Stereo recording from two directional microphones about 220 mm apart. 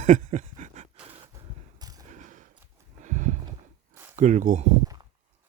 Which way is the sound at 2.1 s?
35° right (ahead or behind).